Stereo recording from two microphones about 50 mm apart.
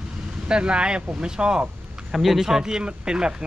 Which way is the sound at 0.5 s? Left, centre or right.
Centre.